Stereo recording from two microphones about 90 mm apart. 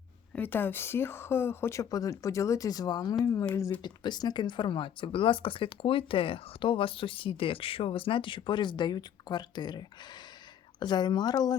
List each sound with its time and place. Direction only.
0.3 s speech: 20° left (ahead or behind)
1.8 s speech: 40° left (ahead or behind)